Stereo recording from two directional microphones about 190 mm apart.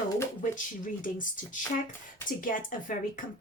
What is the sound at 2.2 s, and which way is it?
Speech, 45° left (ahead or behind).